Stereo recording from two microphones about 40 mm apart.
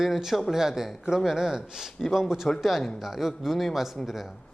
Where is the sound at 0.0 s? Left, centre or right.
Centre.